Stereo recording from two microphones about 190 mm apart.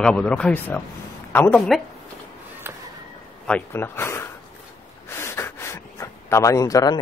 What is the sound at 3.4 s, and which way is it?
Speech, 10° left (ahead or behind).